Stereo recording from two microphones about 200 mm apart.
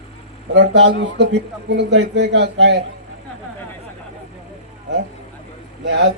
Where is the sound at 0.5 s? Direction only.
65° right (ahead or behind).